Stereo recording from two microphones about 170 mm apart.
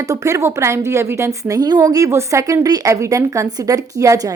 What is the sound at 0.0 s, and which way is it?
A woman's voice, 20° right (ahead or behind).